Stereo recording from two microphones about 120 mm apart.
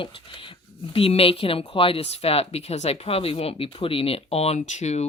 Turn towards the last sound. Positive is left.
turn(degrees=70)  # may be behind; listen again after turning